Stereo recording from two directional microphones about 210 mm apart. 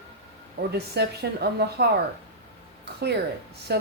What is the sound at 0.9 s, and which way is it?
Speech, 50° right (ahead or behind).